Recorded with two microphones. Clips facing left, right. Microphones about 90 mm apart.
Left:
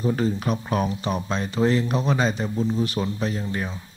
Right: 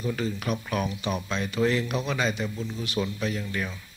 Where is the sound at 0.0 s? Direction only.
35° left (ahead or behind).